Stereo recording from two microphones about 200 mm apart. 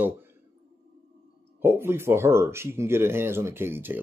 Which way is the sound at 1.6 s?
10° right (ahead or behind).